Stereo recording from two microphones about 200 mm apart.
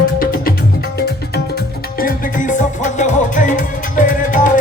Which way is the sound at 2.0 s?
40° left (ahead or behind).